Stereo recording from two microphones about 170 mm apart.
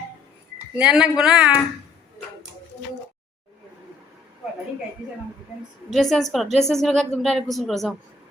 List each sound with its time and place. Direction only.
0.8 s a woman's voice: 5° right (ahead or behind)
5.9 s a woman's voice: centre (ahead or behind)